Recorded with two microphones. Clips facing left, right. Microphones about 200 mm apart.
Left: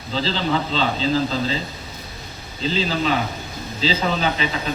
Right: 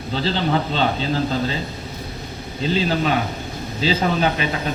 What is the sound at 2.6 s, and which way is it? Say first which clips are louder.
Speech: right 2 dB; 55° right (ahead or behind).